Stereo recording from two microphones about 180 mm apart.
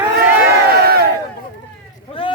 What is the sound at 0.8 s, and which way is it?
Crowd, 60° right (ahead or behind).